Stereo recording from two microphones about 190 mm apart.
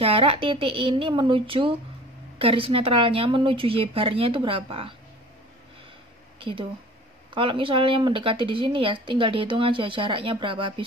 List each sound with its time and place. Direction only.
0.0 s speech: 30° right (ahead or behind)
7.3 s speech: 25° right (ahead or behind)